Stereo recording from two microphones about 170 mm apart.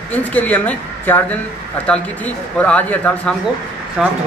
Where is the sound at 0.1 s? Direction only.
10° left (ahead or behind).